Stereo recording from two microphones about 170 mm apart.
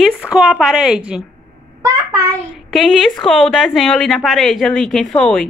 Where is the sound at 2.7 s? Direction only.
Centre (ahead or behind).